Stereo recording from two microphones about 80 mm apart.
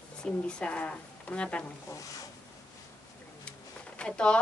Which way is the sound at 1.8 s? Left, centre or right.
Left.